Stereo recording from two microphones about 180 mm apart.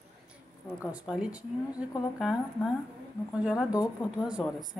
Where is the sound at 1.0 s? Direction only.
5° right (ahead or behind).